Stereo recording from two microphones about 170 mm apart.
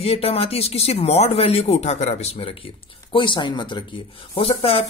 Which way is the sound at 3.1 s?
30° left (ahead or behind).